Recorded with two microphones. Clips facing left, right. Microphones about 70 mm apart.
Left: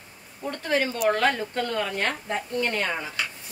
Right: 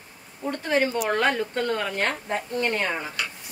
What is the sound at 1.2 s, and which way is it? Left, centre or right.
Speech, right.